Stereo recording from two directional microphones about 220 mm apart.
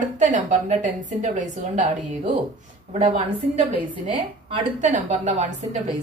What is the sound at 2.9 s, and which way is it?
A woman's voice, 30° right (ahead or behind).